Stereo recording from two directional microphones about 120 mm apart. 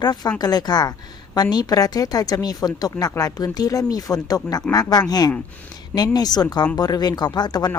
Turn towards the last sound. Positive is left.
turn(degrees=35)  # may be behind; listen again after turning